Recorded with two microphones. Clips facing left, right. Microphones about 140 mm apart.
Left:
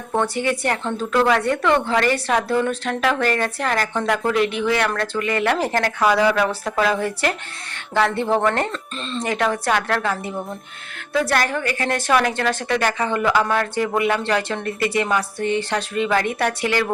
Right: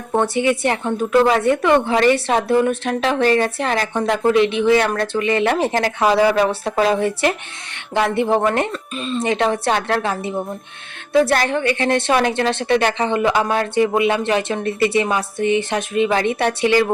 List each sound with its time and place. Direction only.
0.1 s a woman's voice: 20° right (ahead or behind)